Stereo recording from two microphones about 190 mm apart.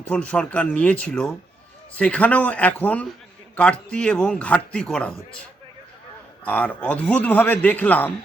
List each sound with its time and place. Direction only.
0.1 s a man's voice: 5° left (ahead or behind)